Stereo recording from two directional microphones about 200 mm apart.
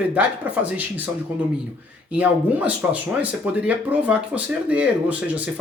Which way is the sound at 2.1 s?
5° right (ahead or behind).